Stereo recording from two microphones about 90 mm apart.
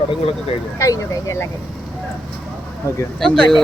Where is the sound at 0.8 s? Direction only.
35° left (ahead or behind).